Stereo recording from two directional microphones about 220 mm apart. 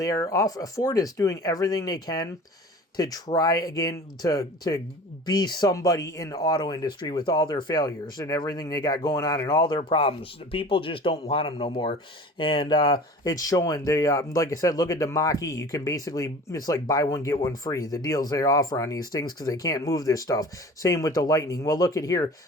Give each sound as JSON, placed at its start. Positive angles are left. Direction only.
{"t": 0.0, "sound": "speech", "side_deg": 15}